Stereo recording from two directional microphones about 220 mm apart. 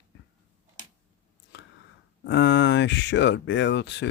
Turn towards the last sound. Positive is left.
turn(degrees=55)  # may be behind; listen again after turning